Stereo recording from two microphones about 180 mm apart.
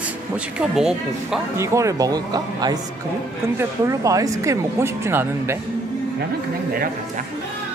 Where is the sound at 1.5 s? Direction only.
15° right (ahead or behind).